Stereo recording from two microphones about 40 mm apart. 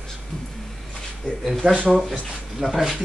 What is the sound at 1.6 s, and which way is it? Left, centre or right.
Speech, right.